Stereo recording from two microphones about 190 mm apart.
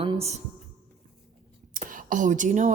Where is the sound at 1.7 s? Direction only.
45° right (ahead or behind).